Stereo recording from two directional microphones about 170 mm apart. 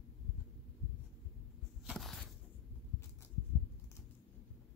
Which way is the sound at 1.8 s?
Centre (ahead or behind).